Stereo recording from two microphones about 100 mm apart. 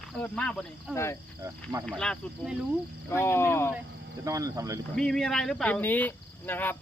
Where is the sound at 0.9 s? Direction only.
30° left (ahead or behind).